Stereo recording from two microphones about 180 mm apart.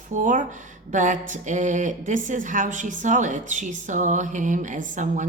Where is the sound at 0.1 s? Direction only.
45° right (ahead or behind).